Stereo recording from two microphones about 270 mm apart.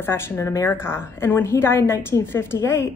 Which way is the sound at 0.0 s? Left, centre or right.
Centre.